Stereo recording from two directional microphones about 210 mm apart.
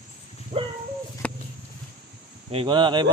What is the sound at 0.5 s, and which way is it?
Dog, 25° right (ahead or behind).